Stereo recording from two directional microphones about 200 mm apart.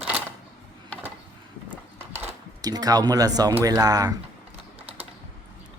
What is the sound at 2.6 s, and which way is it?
Speech, 20° right (ahead or behind).